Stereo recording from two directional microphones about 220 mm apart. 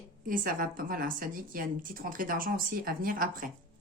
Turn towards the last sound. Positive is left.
turn(degrees=-40)  # may be behind; listen again after turning